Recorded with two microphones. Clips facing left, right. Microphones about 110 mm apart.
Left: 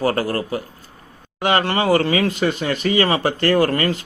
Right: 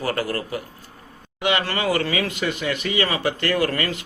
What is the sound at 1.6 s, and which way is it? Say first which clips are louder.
Speech: left 5 dB; 30° left (ahead or behind).